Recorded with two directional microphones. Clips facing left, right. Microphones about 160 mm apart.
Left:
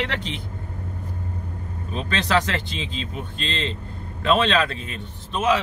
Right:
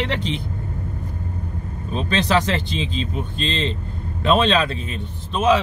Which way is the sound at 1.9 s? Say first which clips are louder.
Right 3 dB; 20° right (ahead or behind).